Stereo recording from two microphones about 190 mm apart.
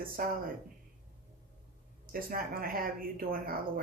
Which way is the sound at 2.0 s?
50° right (ahead or behind).